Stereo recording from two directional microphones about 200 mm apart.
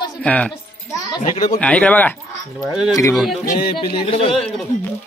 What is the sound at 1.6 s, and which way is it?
Speech, 5° left (ahead or behind).